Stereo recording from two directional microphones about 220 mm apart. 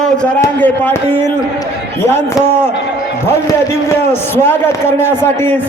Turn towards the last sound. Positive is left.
turn(degrees=10)  # may be behind; listen again after turning